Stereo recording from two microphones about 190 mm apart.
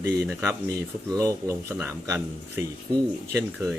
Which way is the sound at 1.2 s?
15° right (ahead or behind).